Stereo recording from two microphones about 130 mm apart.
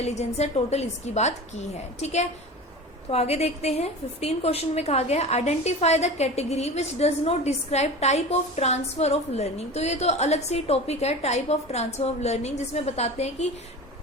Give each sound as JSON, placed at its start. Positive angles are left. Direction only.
{"t": 0.0, "sound": "a woman's voice", "side_deg": 60}
{"t": 3.1, "sound": "a woman's voice", "side_deg": 55}